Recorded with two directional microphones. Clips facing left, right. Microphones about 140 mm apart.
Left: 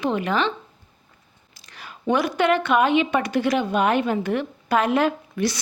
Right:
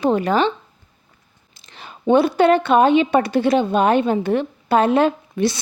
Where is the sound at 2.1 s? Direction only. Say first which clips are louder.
Right 6 dB; 30° right (ahead or behind).